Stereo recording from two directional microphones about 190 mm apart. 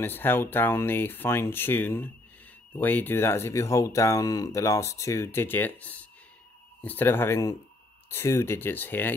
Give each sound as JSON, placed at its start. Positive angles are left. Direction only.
{"t": 0.0, "sound": "speech", "side_deg": 10}